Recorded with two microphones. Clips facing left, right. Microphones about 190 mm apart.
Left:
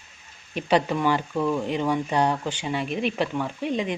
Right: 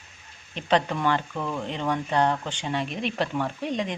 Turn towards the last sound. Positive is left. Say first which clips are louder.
# left 2 dB
turn(degrees=5)  # may be behind; listen again after turning